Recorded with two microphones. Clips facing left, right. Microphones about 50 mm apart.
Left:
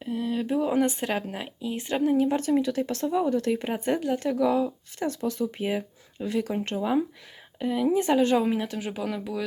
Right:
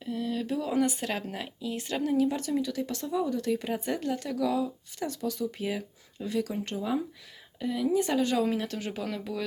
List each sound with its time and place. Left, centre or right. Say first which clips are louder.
0.0 s a sound: left 3 dB; left
1.1 s speech: left 4 dB; centre
8.4 s speech: left 3 dB; centre